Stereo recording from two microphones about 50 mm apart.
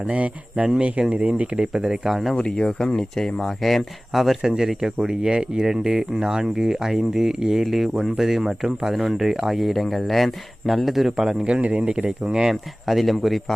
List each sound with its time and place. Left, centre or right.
0.1 s speech: right
1.5 s speech: centre
2.3 s speech: centre
11.4 s speech: right
12.3 s speech: centre
12.9 s speech: centre